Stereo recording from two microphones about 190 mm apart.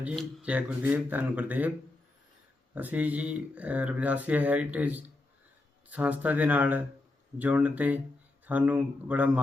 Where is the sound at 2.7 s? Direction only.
10° right (ahead or behind).